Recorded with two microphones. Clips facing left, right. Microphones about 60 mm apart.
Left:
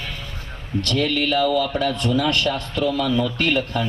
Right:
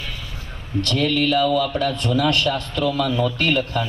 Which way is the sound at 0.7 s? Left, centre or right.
Left.